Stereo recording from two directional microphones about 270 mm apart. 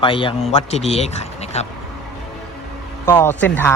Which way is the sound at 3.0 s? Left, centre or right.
Centre.